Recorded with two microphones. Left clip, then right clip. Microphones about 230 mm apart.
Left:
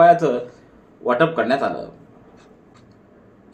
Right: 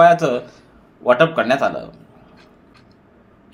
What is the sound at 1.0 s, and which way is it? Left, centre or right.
Speech, right.